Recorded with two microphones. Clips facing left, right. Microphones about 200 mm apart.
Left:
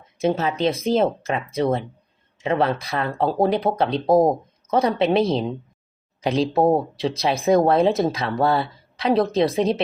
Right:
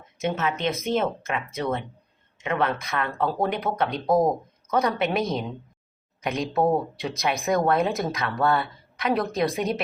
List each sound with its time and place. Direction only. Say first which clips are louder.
0.2 s speech: left 5 dB; 35° left (ahead or behind)